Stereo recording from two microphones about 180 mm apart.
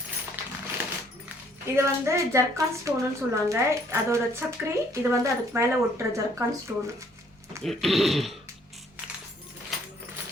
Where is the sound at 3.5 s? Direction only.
15° right (ahead or behind).